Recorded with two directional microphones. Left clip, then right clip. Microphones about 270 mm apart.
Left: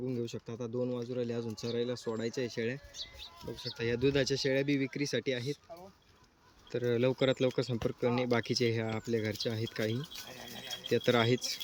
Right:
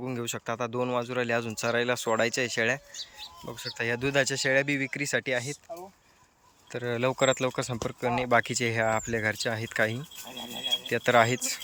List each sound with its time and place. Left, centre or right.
0.1 s speech: centre
0.5 s speech: right
2.4 s speech: centre
6.7 s speech: centre
10.8 s speech: centre